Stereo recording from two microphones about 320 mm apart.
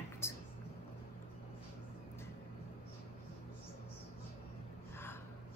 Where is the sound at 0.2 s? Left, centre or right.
Centre.